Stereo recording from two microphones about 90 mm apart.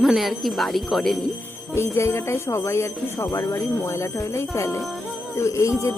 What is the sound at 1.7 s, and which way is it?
Speech, 30° left (ahead or behind).